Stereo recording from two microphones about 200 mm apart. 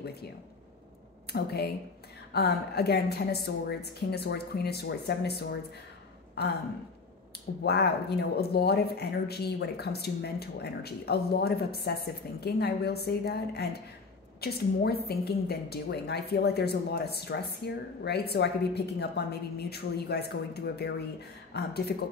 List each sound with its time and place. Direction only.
1.3 s speech: 50° left (ahead or behind)
7.6 s a woman's voice: 55° left (ahead or behind)